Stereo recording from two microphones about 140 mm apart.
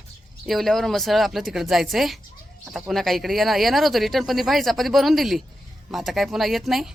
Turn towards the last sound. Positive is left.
turn(degrees=0)  # may be behind; listen again after turning